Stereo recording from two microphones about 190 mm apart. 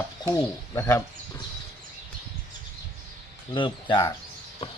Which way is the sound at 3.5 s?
25° left (ahead or behind).